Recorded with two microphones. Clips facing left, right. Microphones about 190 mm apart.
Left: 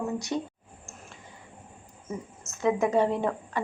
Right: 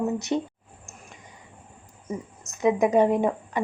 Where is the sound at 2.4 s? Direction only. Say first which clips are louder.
Right 4 dB; 15° right (ahead or behind).